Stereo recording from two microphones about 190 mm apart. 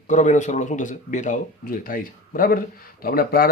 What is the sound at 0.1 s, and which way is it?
Speech, 40° left (ahead or behind).